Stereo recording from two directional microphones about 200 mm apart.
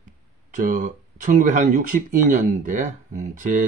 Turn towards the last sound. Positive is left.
turn(degrees=-40)  # may be behind; listen again after turning